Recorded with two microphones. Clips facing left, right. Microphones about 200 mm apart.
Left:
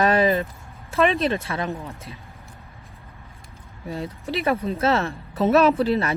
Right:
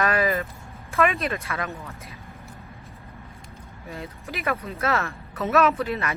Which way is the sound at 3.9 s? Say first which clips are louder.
Left 7 dB; 30° left (ahead or behind).